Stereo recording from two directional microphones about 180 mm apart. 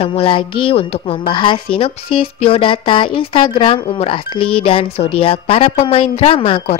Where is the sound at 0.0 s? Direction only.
30° left (ahead or behind).